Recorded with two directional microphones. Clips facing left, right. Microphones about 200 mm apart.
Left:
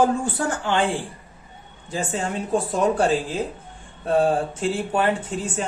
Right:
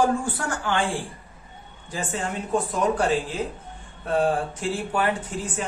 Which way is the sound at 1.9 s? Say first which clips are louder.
Left 3 dB; 25° left (ahead or behind).